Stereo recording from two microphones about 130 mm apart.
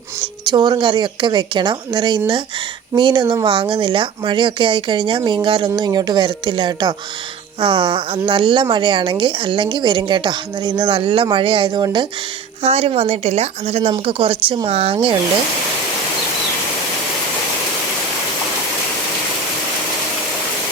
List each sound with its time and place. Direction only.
0.4 s speech: 35° right (ahead or behind)
12.6 s speech: 50° right (ahead or behind)